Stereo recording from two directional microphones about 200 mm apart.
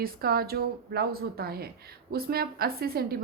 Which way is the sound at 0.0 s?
50° right (ahead or behind).